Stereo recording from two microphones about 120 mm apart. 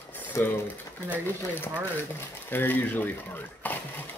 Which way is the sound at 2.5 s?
15° left (ahead or behind).